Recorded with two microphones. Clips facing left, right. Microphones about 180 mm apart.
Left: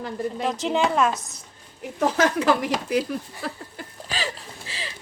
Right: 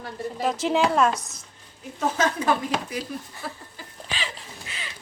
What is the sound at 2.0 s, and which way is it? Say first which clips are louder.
Speech: left 3 dB; 80° left.